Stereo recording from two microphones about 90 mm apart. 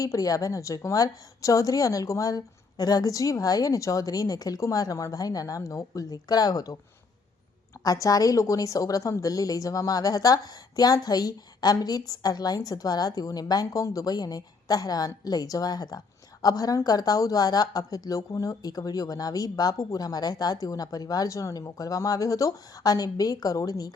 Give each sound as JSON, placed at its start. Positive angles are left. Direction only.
{"t": 0.0, "sound": "a woman's voice", "side_deg": 40}
{"t": 7.9, "sound": "a woman's voice", "side_deg": 40}